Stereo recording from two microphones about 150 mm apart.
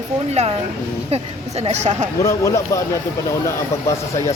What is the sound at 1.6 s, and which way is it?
Speech, 50° right (ahead or behind).